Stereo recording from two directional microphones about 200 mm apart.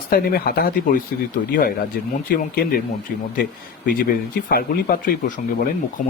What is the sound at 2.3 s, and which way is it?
Speech, 50° left (ahead or behind).